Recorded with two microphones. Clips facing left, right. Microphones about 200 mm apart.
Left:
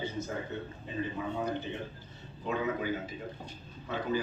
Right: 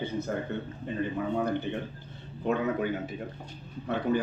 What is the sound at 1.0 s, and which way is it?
Speech, 60° right (ahead or behind).